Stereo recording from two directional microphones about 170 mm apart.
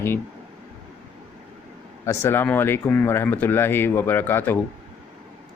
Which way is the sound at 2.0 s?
15° left (ahead or behind).